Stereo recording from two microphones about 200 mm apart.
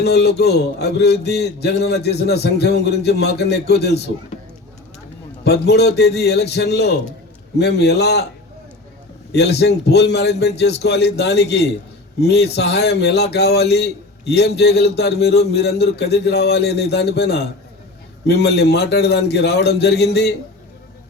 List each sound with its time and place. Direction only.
0.0 s a man's voice: 55° left (ahead or behind)
5.4 s a man's voice: 55° left (ahead or behind)
9.3 s a man's voice: 55° left (ahead or behind)